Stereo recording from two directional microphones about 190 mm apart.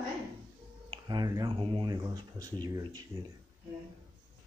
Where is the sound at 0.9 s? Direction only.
20° right (ahead or behind).